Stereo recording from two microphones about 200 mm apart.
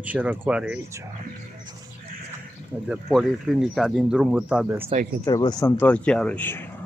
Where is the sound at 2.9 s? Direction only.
Centre (ahead or behind).